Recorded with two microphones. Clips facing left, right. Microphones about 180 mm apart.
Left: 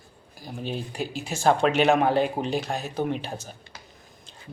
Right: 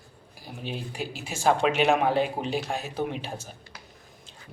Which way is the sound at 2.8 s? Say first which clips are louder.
Left 2 dB; 40° left (ahead or behind).